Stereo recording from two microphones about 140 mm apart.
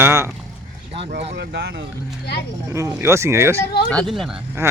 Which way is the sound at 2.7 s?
20° right (ahead or behind).